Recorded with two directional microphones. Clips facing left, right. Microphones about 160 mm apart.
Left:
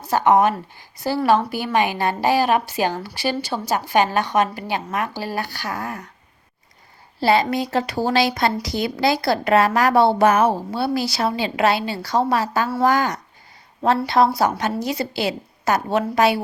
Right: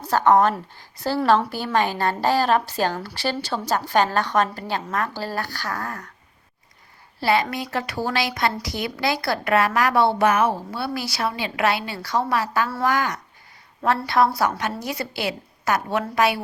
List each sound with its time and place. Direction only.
0.1 s a woman's voice: 15° left (ahead or behind)
7.2 s a woman's voice: 30° left (ahead or behind)